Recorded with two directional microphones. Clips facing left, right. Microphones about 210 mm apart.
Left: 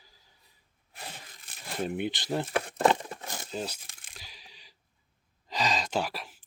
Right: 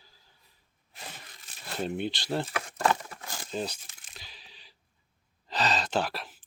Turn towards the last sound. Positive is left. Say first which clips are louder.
# right 1 dB
turn(degrees=10)  # may be behind; listen again after turning